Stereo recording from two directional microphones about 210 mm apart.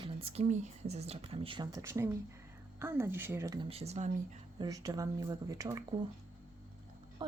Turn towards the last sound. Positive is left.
turn(degrees=-20)  # may be behind; listen again after turning